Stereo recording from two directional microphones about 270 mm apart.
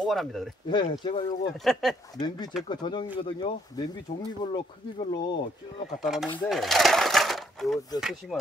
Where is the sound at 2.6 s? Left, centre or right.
Centre.